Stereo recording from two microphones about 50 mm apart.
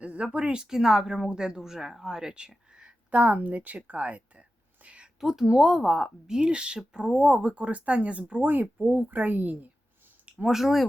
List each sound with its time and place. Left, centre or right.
0.0 s a sound: right
0.3 s speech: centre
3.1 s speech: right
5.2 s a woman's voice: centre; by 9.6 s right
10.5 s speech: centre